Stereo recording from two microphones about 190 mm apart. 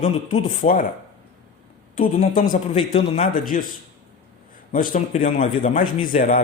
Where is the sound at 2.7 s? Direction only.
30° left (ahead or behind).